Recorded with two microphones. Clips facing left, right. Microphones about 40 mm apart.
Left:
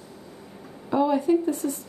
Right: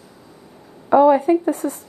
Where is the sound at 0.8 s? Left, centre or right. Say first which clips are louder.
Right 9 dB; right.